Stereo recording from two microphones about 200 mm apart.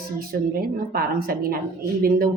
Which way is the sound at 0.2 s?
50° right (ahead or behind).